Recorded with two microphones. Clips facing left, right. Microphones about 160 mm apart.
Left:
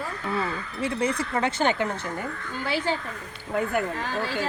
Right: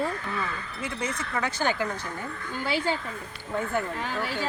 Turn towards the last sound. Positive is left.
turn(degrees=15)  # may be behind; listen again after turning